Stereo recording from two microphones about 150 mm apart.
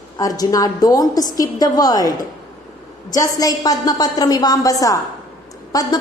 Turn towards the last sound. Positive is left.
turn(degrees=25)  # may be behind; listen again after turning